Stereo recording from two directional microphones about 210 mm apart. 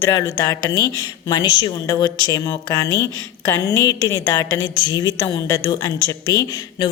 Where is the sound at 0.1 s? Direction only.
15° left (ahead or behind).